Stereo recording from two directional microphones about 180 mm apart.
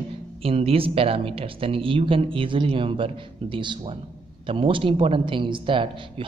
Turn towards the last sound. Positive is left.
turn(degrees=-30)  # may be behind; listen again after turning